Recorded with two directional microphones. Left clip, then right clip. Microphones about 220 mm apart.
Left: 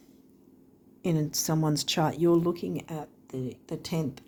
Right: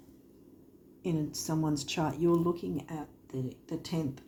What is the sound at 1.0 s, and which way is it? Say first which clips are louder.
Speech: left 5 dB; 50° left (ahead or behind).